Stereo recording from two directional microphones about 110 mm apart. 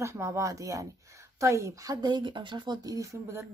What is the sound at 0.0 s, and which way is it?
A woman's voice, 25° right (ahead or behind).